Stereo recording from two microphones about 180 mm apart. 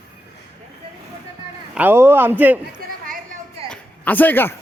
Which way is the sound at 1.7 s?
10° right (ahead or behind).